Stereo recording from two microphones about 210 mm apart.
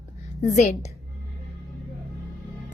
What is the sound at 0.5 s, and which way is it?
Speech, 35° left (ahead or behind).